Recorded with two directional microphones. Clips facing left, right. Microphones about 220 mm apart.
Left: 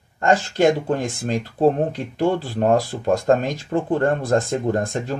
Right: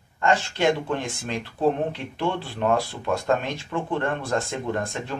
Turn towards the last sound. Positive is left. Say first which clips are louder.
# left 6 dB
turn(degrees=40)  # may be behind; listen again after turning